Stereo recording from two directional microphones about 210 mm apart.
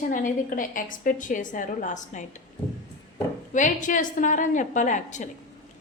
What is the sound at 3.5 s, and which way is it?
A woman's voice, 35° left (ahead or behind).